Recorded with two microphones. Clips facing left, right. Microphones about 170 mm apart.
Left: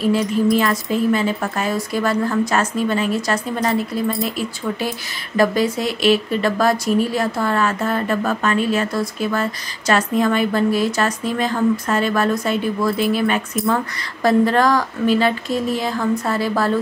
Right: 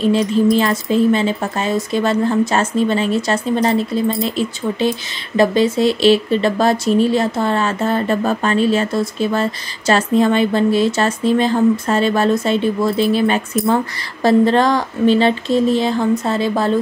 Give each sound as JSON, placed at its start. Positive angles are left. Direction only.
{"t": 0.0, "sound": "speech", "side_deg": -25}